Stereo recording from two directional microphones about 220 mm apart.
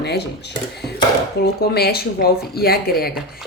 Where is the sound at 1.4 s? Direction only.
45° left (ahead or behind).